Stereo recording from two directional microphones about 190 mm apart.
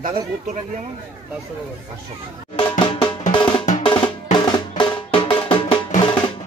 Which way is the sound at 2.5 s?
30° left (ahead or behind).